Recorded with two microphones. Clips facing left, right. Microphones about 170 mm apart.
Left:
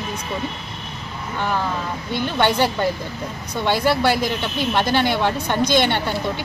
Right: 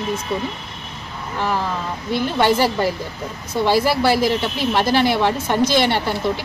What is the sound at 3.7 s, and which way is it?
Speech, 5° right (ahead or behind).